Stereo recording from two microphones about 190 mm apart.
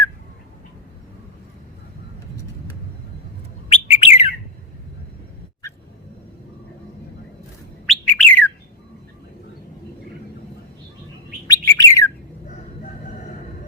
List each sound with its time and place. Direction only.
3.7 s bird: 35° left (ahead or behind)
7.9 s bird: 5° left (ahead or behind)
11.4 s bird: 15° left (ahead or behind)